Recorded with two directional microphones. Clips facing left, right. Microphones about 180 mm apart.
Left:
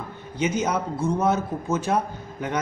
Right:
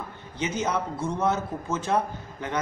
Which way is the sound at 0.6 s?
10° left (ahead or behind).